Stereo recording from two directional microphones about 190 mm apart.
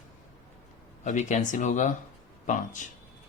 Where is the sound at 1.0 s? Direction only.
40° left (ahead or behind).